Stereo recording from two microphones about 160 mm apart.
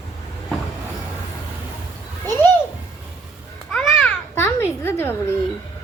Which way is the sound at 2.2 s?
15° left (ahead or behind).